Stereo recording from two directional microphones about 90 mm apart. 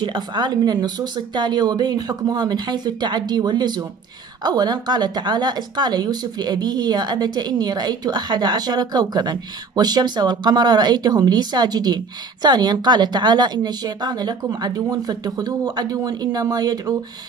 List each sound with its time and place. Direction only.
0.0 s speech: 55° right (ahead or behind)